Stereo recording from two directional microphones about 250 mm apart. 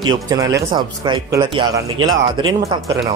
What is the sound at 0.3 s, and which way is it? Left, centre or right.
Speech, centre.